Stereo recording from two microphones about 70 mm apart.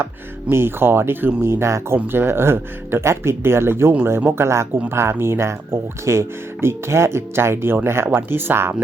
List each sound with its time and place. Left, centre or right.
0.4 s speech: right